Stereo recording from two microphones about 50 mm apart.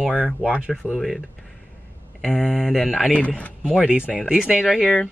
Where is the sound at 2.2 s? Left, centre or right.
Centre.